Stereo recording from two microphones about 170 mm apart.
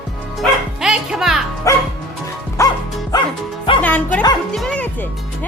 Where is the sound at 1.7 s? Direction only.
20° left (ahead or behind).